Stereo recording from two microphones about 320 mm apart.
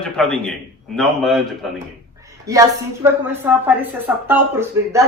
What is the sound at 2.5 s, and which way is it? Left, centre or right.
Speech, centre.